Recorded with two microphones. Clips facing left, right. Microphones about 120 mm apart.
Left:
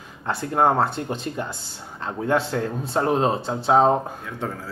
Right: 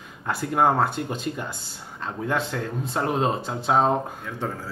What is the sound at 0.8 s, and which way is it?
A man's voice, centre (ahead or behind).